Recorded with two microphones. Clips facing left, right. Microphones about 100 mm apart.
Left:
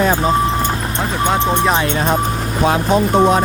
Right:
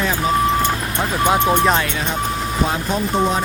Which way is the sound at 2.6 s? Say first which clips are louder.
Left 9 dB; 65° left (ahead or behind).